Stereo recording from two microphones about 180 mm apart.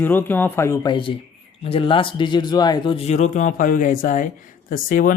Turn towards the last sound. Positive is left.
turn(degrees=50)  # may be behind; listen again after turning